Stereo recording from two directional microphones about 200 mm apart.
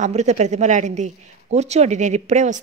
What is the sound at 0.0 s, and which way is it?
Speech, 35° right (ahead or behind).